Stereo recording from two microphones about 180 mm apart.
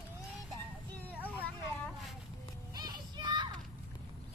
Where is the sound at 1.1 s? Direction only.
10° right (ahead or behind).